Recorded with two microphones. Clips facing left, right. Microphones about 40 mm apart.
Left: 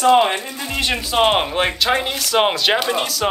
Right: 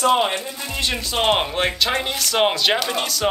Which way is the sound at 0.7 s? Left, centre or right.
Left.